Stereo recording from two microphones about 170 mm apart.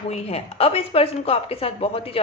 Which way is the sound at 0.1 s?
35° left (ahead or behind).